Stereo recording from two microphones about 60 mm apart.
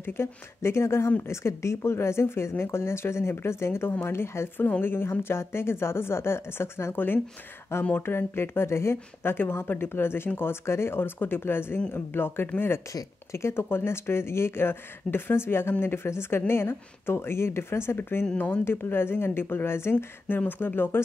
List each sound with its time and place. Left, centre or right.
0.0 s speech: left
12.9 s speech: left